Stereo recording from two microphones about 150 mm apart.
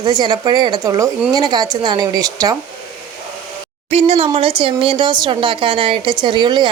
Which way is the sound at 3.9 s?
45° right (ahead or behind).